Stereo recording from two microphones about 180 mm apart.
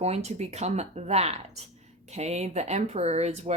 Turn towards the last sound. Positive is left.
turn(degrees=-35)  # may be behind; listen again after turning